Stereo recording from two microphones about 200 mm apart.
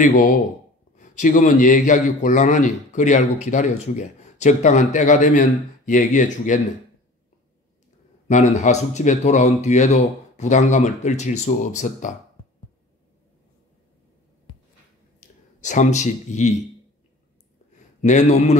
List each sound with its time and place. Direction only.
0.0 s a man's voice: 40° left (ahead or behind)
8.3 s a man's voice: 35° left (ahead or behind)
15.1 s speech: 35° left (ahead or behind)
18.0 s a man's voice: 35° left (ahead or behind)